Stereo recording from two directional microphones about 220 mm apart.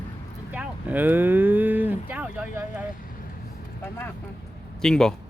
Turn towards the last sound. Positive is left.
turn(degrees=5)  # may be behind; listen again after turning